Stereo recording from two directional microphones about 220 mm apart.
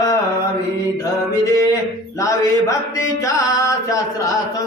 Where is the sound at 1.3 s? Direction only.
15° left (ahead or behind).